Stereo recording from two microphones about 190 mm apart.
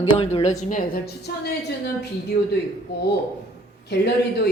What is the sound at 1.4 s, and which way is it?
Speech, 60° left (ahead or behind).